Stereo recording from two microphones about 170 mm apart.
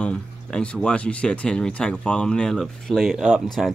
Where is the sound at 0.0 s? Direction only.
5° left (ahead or behind).